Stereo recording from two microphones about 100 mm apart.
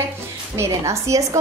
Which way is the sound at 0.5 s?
30° right (ahead or behind).